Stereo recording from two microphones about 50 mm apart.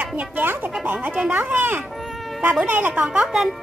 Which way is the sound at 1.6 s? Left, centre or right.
Right.